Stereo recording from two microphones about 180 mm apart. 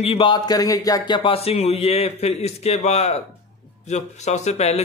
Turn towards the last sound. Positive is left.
turn(degrees=35)  # may be behind; listen again after turning